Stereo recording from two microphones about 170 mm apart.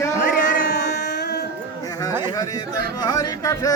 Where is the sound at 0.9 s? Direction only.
80° left.